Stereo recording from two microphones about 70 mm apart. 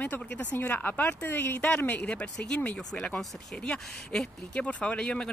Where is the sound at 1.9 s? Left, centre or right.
Centre.